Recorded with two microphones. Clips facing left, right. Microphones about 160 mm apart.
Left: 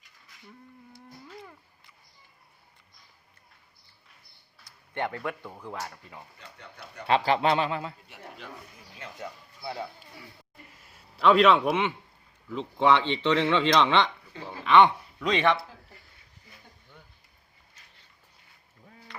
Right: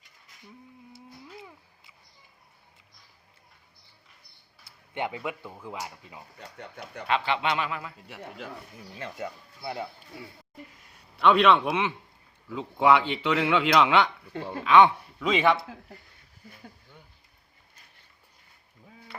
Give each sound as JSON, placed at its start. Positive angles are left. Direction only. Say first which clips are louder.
{"t": 0.9, "sound": "a sound", "louder": "even", "side_deg": -5}
{"t": 4.9, "sound": "a man's voice", "louder": "even", "side_deg": -10}
{"t": 7.1, "sound": "speech", "louder": "left 4 dB", "side_deg": 40}
{"t": 9.0, "sound": "speech", "louder": "right 4 dB", "side_deg": -20}
{"t": 10.9, "sound": "a man's voice", "louder": "left 1 dB", "side_deg": 0}